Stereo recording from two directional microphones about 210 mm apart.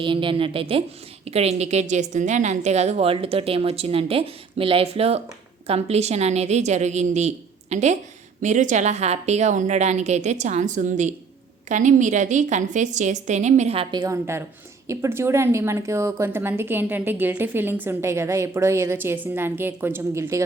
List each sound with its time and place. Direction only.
0.0 s a woman's voice: 25° right (ahead or behind)